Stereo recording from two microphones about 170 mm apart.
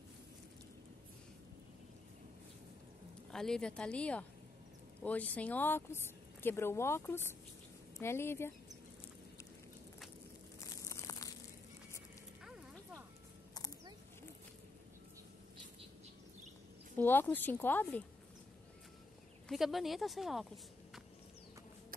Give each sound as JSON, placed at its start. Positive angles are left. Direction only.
{"t": 3.3, "sound": "a woman's voice", "side_deg": 5}
{"t": 10.6, "sound": "a sound", "side_deg": 20}
{"t": 16.9, "sound": "a woman's voice", "side_deg": 10}
{"t": 19.5, "sound": "a woman's voice", "side_deg": 0}